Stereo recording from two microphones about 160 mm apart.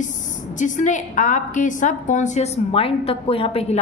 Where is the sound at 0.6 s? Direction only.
50° left (ahead or behind).